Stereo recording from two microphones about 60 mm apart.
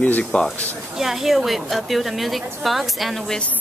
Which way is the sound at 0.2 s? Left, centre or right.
Centre.